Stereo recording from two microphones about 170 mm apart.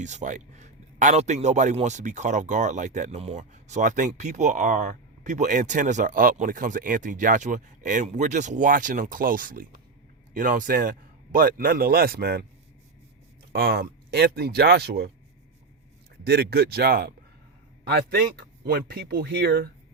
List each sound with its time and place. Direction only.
0.0 s a man's voice: 45° right (ahead or behind); by 12.5 s 70° right (ahead or behind)
13.5 s speech: 65° right (ahead or behind)
16.2 s speech: 70° right (ahead or behind)